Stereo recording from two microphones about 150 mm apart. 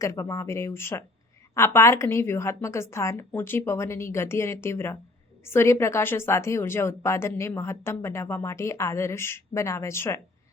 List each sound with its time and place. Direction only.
0.0 s a woman's voice: 20° left (ahead or behind)